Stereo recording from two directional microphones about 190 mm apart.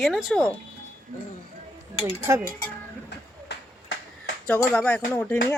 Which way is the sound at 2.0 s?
15° right (ahead or behind).